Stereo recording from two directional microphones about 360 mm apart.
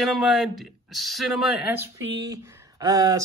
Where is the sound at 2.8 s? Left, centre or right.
Centre.